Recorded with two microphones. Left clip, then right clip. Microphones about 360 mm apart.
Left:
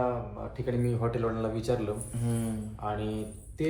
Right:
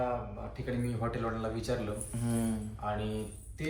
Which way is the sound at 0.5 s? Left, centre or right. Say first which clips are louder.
Left 6 dB; centre.